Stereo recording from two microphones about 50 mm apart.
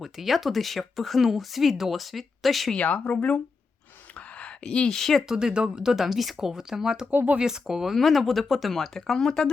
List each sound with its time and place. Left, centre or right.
0.0 s speech: centre
2.7 s speech: left
4.1 s a sound: left; by 5.2 s centre
5.3 s speech: centre
7.1 s speech: right
7.3 s speech: centre
7.9 s speech: centre